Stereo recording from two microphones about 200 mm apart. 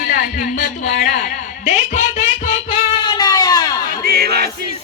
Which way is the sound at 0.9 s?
50° left (ahead or behind).